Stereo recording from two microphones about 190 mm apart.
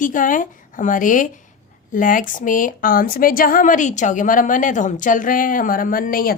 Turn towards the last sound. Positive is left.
turn(degrees=50)  # may be behind; listen again after turning